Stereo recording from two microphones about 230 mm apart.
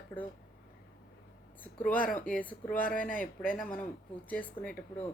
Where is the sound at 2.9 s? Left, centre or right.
Left.